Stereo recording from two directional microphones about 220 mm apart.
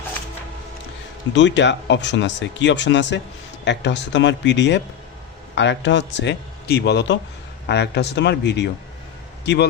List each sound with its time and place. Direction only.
1.3 s a man's voice: 55° left (ahead or behind)